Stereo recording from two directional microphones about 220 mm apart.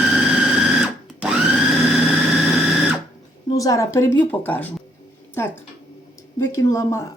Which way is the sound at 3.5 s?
15° left (ahead or behind).